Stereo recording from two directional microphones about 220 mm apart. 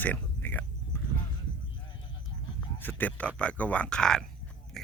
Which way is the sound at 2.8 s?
10° left (ahead or behind).